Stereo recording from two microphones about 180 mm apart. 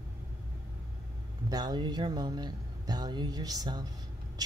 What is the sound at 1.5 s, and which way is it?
Speech, 25° right (ahead or behind).